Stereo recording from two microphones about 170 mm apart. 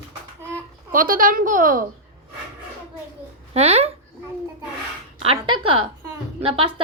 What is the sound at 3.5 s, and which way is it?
Speech, 40° right (ahead or behind).